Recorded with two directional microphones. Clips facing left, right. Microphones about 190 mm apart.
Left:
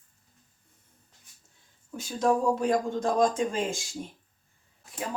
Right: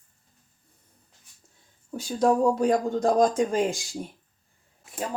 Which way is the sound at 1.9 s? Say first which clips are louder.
Right 3 dB; 35° right (ahead or behind).